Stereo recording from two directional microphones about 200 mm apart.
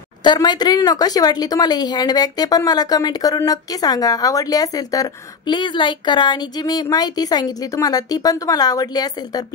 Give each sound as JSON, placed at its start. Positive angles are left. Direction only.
{"t": 0.2, "sound": "a woman's voice", "side_deg": 20}